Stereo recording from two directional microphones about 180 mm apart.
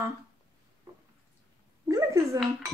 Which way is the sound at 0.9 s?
15° right (ahead or behind).